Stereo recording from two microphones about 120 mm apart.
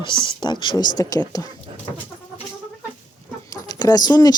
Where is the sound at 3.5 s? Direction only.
35° left (ahead or behind).